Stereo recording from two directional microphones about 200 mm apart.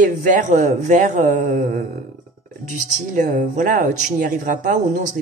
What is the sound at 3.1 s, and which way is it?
Speech, 40° right (ahead or behind).